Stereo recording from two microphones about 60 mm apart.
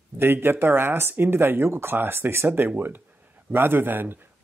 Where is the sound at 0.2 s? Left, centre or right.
Right.